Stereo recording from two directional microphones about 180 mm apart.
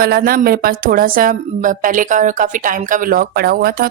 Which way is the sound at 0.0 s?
55° right (ahead or behind).